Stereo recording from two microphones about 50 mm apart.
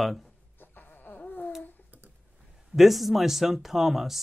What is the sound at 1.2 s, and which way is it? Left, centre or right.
Babbling, left.